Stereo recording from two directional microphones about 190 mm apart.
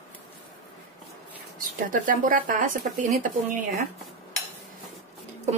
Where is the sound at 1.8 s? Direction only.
45° right (ahead or behind).